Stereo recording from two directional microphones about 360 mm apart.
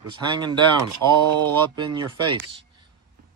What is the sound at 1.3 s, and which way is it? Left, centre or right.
Speech, right.